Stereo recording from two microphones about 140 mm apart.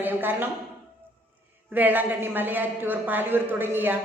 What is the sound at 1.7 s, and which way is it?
A woman's voice, 15° right (ahead or behind).